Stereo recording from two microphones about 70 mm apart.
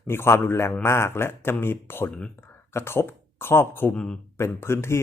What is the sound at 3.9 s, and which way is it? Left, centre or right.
Speech, centre.